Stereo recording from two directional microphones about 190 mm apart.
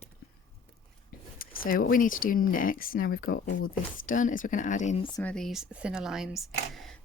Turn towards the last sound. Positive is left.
turn(degrees=0)  # may be behind; listen again after turning